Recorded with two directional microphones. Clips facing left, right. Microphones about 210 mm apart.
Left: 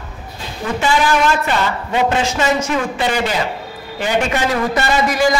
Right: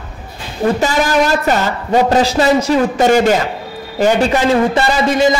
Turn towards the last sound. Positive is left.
turn(degrees=-25)  # may be behind; listen again after turning